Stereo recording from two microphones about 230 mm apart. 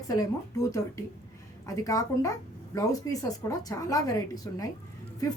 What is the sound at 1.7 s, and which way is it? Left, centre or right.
Speech, centre.